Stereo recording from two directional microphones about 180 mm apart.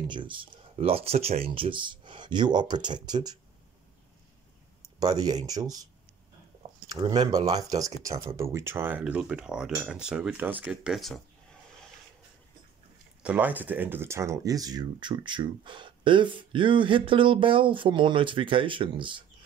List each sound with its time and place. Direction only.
0.1 s speech: 25° right (ahead or behind)
5.0 s speech: 20° right (ahead or behind)
6.9 s speech: 20° right (ahead or behind); by 11.1 s centre (ahead or behind)
13.2 s speech: 10° right (ahead or behind); by 19.2 s 25° right (ahead or behind)